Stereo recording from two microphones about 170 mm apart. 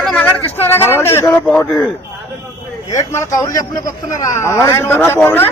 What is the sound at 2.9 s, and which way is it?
A man's voice, 20° left (ahead or behind).